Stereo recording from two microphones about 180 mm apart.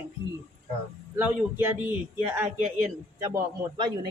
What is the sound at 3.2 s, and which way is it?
Speech, 25° right (ahead or behind).